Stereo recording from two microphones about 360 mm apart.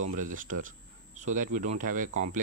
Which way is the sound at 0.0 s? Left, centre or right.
Right.